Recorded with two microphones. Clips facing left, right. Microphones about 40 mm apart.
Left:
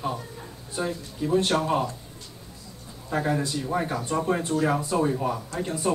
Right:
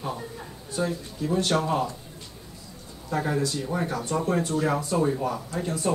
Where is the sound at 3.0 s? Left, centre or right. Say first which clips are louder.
Even; centre.